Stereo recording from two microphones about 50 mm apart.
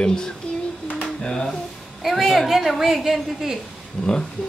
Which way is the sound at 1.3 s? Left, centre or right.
Centre.